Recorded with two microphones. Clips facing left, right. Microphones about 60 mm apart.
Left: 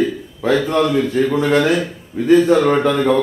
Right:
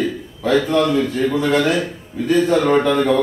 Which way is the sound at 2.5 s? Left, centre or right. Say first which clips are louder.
Even; centre.